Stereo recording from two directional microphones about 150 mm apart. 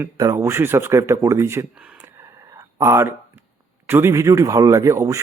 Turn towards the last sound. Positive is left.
turn(degrees=-20)  # may be behind; listen again after turning